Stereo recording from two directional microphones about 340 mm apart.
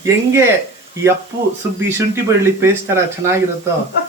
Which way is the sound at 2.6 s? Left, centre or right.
Centre.